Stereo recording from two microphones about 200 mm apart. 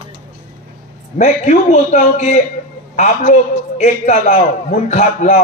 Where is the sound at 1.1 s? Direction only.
35° left (ahead or behind).